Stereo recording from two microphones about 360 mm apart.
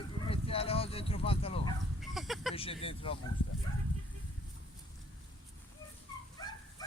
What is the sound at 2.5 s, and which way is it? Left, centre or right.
Speech, centre.